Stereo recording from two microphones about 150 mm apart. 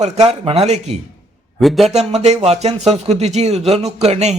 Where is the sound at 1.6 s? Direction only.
Centre (ahead or behind).